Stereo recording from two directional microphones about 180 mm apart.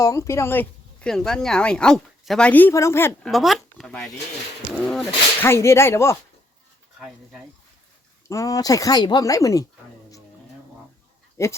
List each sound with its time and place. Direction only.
0.0 s speech: 15° left (ahead or behind)
3.2 s speech: centre (ahead or behind); by 6.1 s 15° left (ahead or behind)
8.3 s speech: 20° left (ahead or behind)
11.4 s speech: 15° left (ahead or behind)